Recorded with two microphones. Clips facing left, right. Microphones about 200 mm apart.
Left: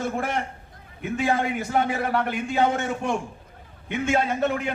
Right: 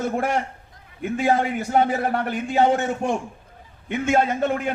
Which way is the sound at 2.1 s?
50° right (ahead or behind).